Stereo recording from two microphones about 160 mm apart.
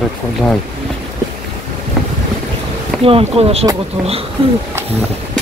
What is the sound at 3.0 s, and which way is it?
Speech, 35° right (ahead or behind).